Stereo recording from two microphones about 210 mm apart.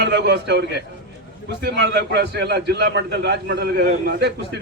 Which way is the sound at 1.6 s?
55° right (ahead or behind).